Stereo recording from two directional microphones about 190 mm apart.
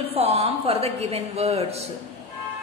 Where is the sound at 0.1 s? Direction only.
35° right (ahead or behind).